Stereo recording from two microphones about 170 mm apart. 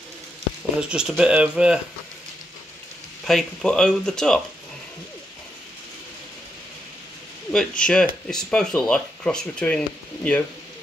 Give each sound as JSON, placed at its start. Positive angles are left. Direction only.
{"t": 0.7, "sound": "speech", "side_deg": -5}
{"t": 3.3, "sound": "speech", "side_deg": 5}
{"t": 7.5, "sound": "speech", "side_deg": 5}